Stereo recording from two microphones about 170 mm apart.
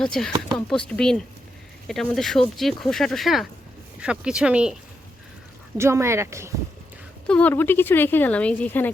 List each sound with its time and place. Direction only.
0.0 s speech: 5° left (ahead or behind)
5.7 s speech: 15° right (ahead or behind)
7.3 s speech: 10° left (ahead or behind)